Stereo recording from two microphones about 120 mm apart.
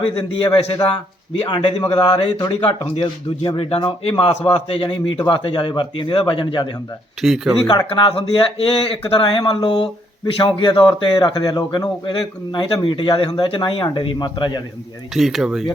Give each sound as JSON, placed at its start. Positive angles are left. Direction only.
{"t": 0.0, "sound": "speech", "side_deg": 45}
{"t": 7.2, "sound": "speech", "side_deg": -5}
{"t": 7.9, "sound": "speech", "side_deg": 45}
{"t": 15.1, "sound": "speech", "side_deg": 0}